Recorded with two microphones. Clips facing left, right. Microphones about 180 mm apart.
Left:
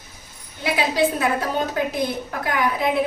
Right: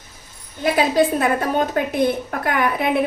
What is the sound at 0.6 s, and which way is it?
A woman's voice, 50° right (ahead or behind).